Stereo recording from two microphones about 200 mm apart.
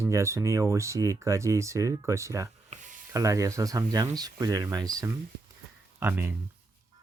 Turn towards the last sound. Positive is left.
turn(degrees=-10)  # may be behind; listen again after turning